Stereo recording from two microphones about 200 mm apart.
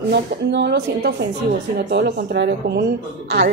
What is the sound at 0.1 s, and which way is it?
A woman's voice, 60° right (ahead or behind).